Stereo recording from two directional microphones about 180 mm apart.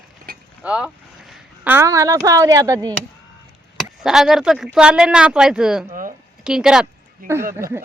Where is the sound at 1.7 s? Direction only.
15° right (ahead or behind).